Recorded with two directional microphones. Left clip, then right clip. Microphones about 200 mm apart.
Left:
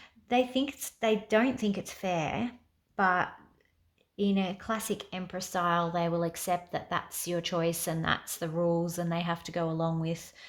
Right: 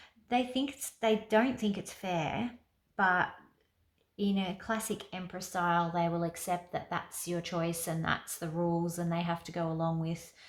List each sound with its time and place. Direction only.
0.0 s speech: 35° left (ahead or behind)